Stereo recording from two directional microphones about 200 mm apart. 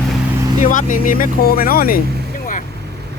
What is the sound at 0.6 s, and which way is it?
Speech, 40° left (ahead or behind).